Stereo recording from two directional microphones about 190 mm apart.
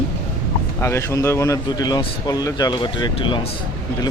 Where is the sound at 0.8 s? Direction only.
15° left (ahead or behind).